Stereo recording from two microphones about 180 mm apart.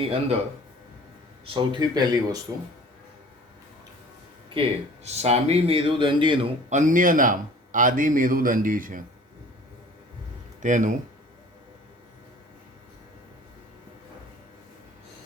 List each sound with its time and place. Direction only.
0.0 s speech: 30° right (ahead or behind)
1.5 s speech: 25° right (ahead or behind)
5.1 s speech: 35° right (ahead or behind)
6.7 s a man's voice: 45° right (ahead or behind)
10.6 s a man's voice: 45° right (ahead or behind)